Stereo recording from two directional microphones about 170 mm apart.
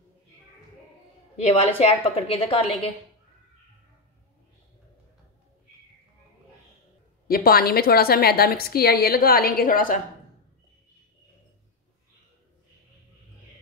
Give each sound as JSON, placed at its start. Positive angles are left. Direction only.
{"t": 1.5, "sound": "a woman's voice", "side_deg": 35}
{"t": 7.2, "sound": "a woman's voice", "side_deg": 60}